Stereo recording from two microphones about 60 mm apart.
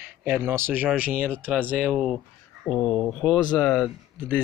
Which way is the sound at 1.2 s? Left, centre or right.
Right.